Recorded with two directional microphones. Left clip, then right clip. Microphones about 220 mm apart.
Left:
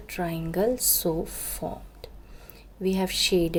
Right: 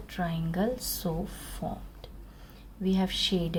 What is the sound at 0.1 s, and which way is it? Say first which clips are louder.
A woman's voice: left 4 dB; 30° left (ahead or behind).